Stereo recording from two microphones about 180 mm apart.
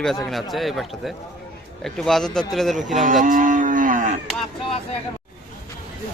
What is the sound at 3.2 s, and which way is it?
Livestock, 45° right (ahead or behind).